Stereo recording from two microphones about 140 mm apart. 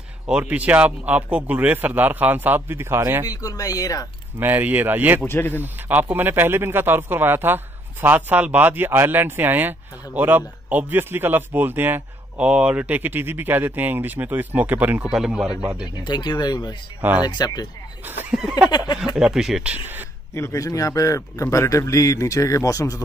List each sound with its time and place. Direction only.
0.3 s speech: 10° right (ahead or behind)
3.3 s a man's voice: 25° left (ahead or behind)
4.4 s speech: 15° right (ahead or behind)
5.2 s speech: 15° left (ahead or behind)
5.6 s speech: 15° right (ahead or behind)
16.0 s speech: 30° left (ahead or behind)
18.0 s speech: 15° right (ahead or behind)
19.1 s speech: 5° right (ahead or behind)
20.3 s a man's voice: 20° left (ahead or behind)